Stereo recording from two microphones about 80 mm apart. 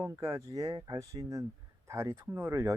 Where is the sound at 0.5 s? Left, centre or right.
Right.